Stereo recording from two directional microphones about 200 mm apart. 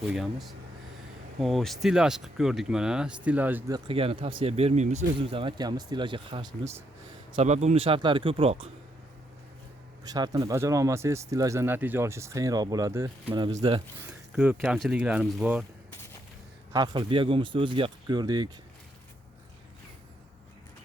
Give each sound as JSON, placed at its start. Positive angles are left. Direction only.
{"t": 0.1, "sound": "speech", "side_deg": 0}
{"t": 3.8, "sound": "speech", "side_deg": -30}
{"t": 10.0, "sound": "speech", "side_deg": -20}
{"t": 14.0, "sound": "speech", "side_deg": -5}
{"t": 16.7, "sound": "speech", "side_deg": -20}